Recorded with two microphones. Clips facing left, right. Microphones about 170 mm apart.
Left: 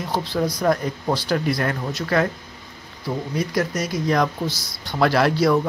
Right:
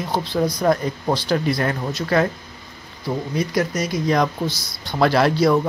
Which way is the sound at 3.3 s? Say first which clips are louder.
Right 1 dB; 20° right (ahead or behind).